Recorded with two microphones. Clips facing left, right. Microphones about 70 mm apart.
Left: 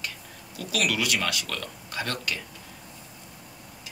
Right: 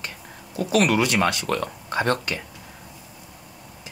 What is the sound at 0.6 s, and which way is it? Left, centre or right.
Speech, right.